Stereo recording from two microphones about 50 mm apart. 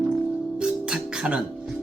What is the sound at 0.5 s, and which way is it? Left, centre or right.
Music, centre.